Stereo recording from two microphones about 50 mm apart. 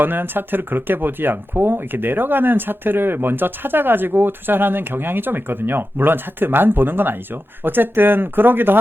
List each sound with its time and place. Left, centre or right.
0.0 s speech: right